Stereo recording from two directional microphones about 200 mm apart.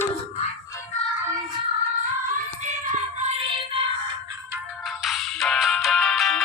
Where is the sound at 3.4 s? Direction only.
25° right (ahead or behind).